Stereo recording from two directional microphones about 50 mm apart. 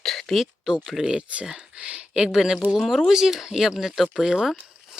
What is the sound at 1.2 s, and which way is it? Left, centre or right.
Speech, right.